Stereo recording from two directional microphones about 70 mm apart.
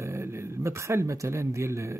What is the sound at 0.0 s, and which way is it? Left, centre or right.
A man's voice, right.